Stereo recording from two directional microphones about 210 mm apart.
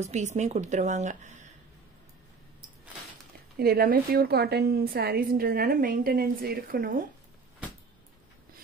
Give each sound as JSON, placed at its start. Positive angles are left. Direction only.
{"t": 0.0, "sound": "a woman's voice", "side_deg": -35}
{"t": 3.5, "sound": "a woman's voice", "side_deg": -45}